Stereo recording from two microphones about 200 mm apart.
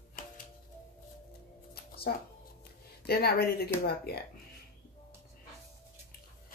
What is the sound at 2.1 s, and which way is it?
Speech, 50° left (ahead or behind).